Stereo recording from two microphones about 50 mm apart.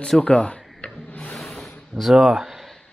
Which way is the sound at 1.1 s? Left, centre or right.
Left.